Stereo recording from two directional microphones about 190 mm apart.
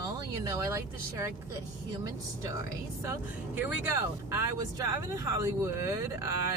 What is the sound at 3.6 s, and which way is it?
Speech, 10° right (ahead or behind).